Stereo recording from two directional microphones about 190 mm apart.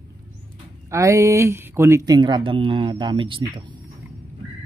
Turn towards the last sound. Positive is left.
turn(degrees=-25)  # may be behind; listen again after turning